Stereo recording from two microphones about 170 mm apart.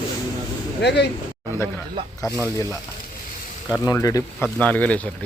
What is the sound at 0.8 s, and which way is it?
Speech, 85° left.